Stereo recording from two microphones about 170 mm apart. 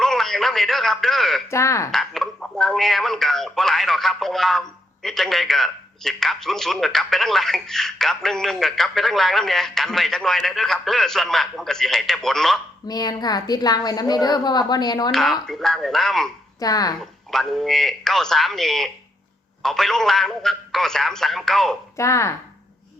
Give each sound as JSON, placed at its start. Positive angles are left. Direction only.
{"t": 0.0, "sound": "radio", "side_deg": 0}
{"t": 1.5, "sound": "speech", "side_deg": 15}
{"t": 1.9, "sound": "a man's voice", "side_deg": 0}
{"t": 12.9, "sound": "a woman's voice", "side_deg": 25}
{"t": 15.1, "sound": "a man's voice", "side_deg": 0}
{"t": 16.6, "sound": "a woman's voice", "side_deg": 20}
{"t": 17.3, "sound": "a man's voice", "side_deg": 0}
{"t": 21.9, "sound": "speech", "side_deg": 15}